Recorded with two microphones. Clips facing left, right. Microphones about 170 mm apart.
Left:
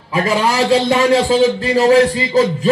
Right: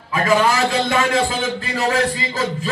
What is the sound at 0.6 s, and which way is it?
A man's voice, 35° left (ahead or behind).